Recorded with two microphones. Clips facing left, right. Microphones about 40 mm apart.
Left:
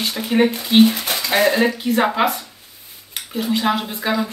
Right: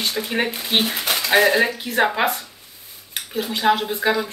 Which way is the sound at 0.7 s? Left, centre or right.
Right.